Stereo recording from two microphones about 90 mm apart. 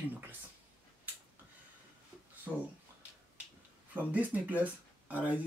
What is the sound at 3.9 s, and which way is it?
Speech, 20° right (ahead or behind).